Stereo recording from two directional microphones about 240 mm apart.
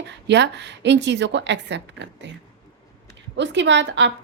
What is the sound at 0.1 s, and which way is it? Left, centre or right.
A woman's voice, right.